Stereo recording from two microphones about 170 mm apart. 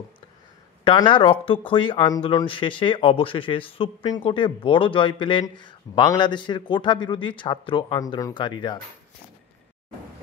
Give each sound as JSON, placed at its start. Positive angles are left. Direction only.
{"t": 0.8, "sound": "speech", "side_deg": 30}